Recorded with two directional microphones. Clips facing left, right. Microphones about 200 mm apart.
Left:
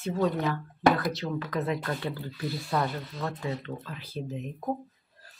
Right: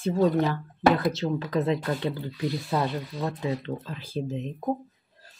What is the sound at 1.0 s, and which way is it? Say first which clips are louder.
Speech: right 4 dB; 25° right (ahead or behind).